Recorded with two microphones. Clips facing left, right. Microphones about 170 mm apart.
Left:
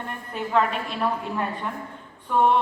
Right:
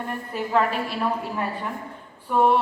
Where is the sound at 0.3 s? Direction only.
5° right (ahead or behind).